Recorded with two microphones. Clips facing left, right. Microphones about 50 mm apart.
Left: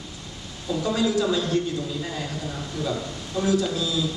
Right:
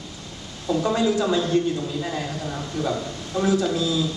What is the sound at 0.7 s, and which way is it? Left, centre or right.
A man's voice, centre.